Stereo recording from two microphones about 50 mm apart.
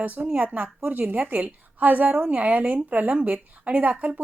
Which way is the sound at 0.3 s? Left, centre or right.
Right.